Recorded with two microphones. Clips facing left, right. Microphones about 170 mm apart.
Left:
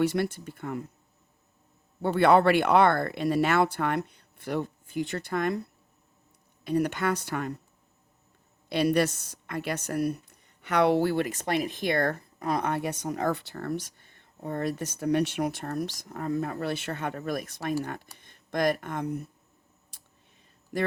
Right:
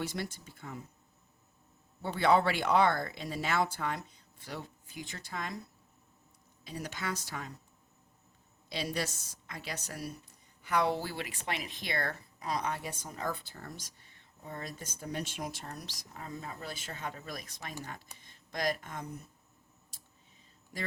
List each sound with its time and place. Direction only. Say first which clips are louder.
0.0 s a woman's voice: left 12 dB; 60° left (ahead or behind)
2.0 s a woman's voice: left 7 dB; 60° left (ahead or behind)
6.7 s a woman's voice: left 12 dB; 60° left (ahead or behind)
8.7 s a woman's voice: left 12 dB; 60° left (ahead or behind)